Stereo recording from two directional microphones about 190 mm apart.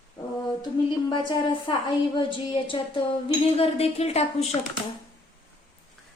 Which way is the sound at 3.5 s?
30° left (ahead or behind).